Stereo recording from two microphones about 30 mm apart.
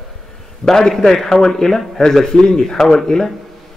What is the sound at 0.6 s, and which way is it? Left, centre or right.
A man's voice, left.